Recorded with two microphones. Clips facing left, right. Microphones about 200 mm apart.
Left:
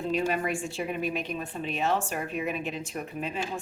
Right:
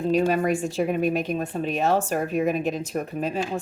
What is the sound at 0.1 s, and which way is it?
A woman's voice, 40° right (ahead or behind).